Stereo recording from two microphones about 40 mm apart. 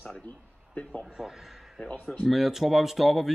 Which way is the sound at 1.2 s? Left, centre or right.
Centre.